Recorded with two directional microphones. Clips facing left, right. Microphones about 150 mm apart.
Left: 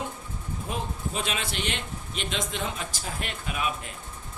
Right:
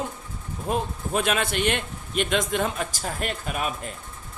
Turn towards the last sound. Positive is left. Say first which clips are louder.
# right 3 dB
turn(degrees=-45)  # may be behind; listen again after turning